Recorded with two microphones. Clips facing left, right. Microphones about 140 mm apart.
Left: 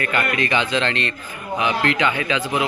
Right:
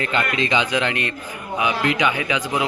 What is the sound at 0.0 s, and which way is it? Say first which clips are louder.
A man's voice: even; 20° right (ahead or behind).